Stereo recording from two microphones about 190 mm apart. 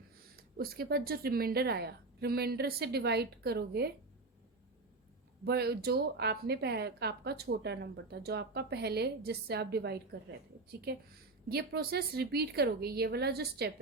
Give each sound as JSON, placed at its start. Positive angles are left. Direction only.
{"t": 0.5, "sound": "a woman's voice", "side_deg": -55}
{"t": 5.5, "sound": "a woman's voice", "side_deg": -55}